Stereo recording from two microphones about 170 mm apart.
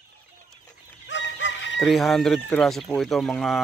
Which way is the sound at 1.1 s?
90° left.